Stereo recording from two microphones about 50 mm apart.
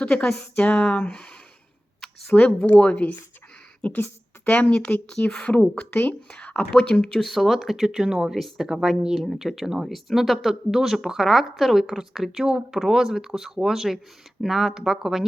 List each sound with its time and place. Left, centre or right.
0.0 s speech: left
2.3 s speech: centre
2.7 s speech: left
5.0 s speech: left
7.1 s speech: centre
8.3 s speech: centre